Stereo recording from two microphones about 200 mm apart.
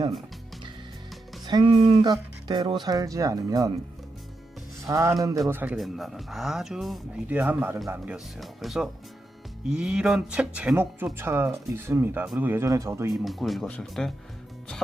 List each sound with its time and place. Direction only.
1.5 s speech: 25° right (ahead or behind)
4.9 s speech: 15° right (ahead or behind)
13.2 s speech: centre (ahead or behind)